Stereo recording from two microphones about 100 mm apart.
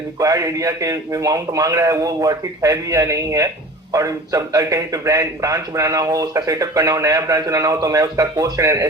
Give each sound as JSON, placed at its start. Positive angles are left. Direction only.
{"t": 0.2, "sound": "a man's voice", "side_deg": -35}